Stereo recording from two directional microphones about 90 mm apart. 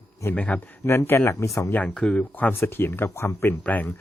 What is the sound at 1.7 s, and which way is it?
A man's voice, 15° left (ahead or behind).